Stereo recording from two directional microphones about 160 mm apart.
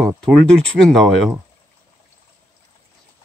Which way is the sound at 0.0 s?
5° left (ahead or behind).